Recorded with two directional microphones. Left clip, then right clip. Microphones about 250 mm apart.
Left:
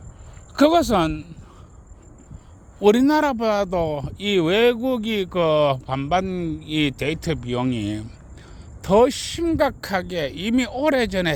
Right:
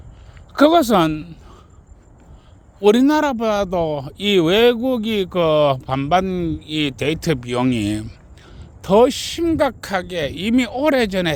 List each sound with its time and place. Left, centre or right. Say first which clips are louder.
0.5 s speech: right 4 dB; centre
2.8 s speech: right 2 dB; centre